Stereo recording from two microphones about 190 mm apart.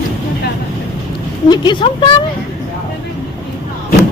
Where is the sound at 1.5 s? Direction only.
25° left (ahead or behind).